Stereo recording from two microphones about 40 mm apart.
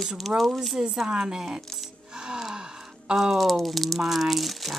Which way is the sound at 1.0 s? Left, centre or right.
Right.